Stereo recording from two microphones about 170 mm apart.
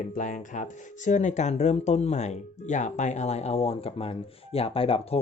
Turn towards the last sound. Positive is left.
turn(degrees=35)  # may be behind; listen again after turning